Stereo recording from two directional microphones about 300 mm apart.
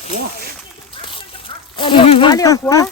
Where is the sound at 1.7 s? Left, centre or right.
Centre.